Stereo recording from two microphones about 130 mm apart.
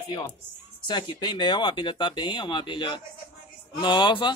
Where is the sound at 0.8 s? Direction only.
35° left (ahead or behind).